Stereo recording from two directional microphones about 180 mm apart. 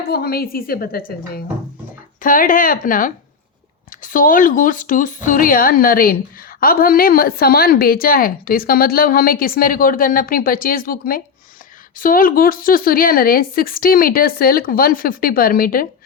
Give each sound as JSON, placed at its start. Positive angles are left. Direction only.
{"t": 0.1, "sound": "a woman's voice", "side_deg": 55}
{"t": 2.2, "sound": "a woman's voice", "side_deg": 50}